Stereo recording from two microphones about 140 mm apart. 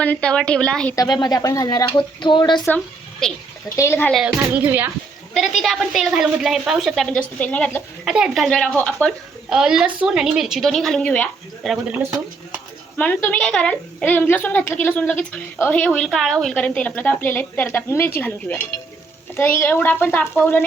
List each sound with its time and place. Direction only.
0.0 s a woman's voice: 10° left (ahead or behind)
0.9 s speech: 30° left (ahead or behind)
3.2 s a woman's voice: 5° left (ahead or behind)
3.8 s a woman's voice: 15° left (ahead or behind)
4.1 s speech: 5° right (ahead or behind)
5.3 s a woman's voice: centre (ahead or behind)
8.0 s a woman's voice: 5° right (ahead or behind)
9.5 s a woman's voice: 5° right (ahead or behind)
13.0 s a woman's voice: 10° left (ahead or behind)
19.4 s a woman's voice: 15° left (ahead or behind)